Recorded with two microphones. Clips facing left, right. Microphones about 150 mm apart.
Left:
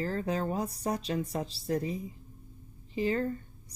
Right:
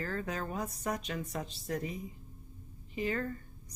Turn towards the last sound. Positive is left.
turn(degrees=30)  # may be behind; listen again after turning